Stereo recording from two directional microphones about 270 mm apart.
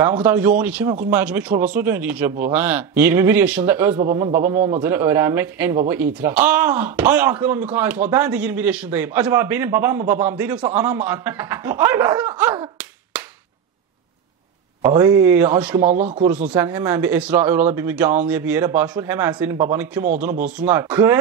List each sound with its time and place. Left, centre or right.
0.0 s speech: centre
3.9 s a man's voice: right
4.8 s speech: centre
14.8 s speech: centre